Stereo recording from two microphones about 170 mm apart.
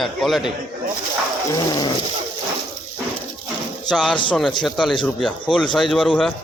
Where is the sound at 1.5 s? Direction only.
25° left (ahead or behind).